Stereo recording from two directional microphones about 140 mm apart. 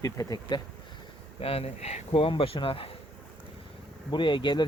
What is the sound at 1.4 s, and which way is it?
Speech, 45° left (ahead or behind).